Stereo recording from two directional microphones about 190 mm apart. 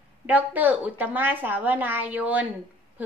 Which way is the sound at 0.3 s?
10° right (ahead or behind).